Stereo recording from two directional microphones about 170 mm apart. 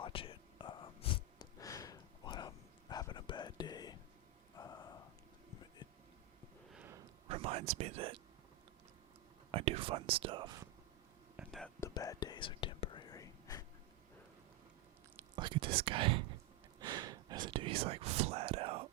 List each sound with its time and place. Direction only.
0.0 s whispering: 30° left (ahead or behind)
1.6 s a sound: 20° left (ahead or behind)
2.9 s whispering: 25° left (ahead or behind)
4.5 s a sound: 25° left (ahead or behind)
6.7 s a sound: 5° right (ahead or behind)
7.3 s a sound: 35° right (ahead or behind)
7.7 s speech: 35° right (ahead or behind)
9.5 s speech: 35° right (ahead or behind)
11.3 s whispering: centre (ahead or behind)
11.8 s whispering: 20° left (ahead or behind)
15.4 s whispering: 30° right (ahead or behind)
15.8 s speech: 30° right (ahead or behind)
16.8 s snort: 25° right (ahead or behind)
17.5 s whispering: 30° right (ahead or behind)